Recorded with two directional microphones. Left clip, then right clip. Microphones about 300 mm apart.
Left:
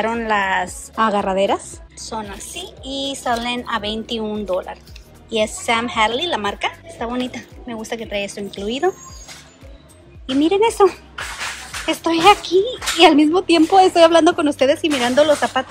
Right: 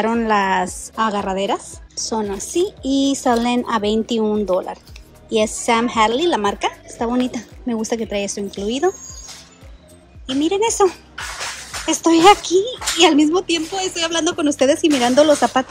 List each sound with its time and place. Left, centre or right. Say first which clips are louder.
0.0 s a woman's voice: right 1 dB; centre
10.3 s speech: left 2 dB; centre